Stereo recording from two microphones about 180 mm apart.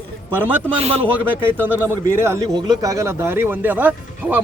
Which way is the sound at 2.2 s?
15° right (ahead or behind).